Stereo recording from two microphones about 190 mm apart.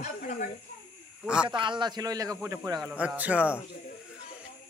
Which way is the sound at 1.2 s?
5° right (ahead or behind).